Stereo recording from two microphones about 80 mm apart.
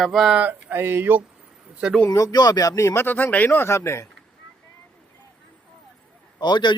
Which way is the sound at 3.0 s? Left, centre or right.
Left.